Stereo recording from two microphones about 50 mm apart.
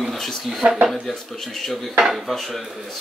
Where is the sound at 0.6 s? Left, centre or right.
Right.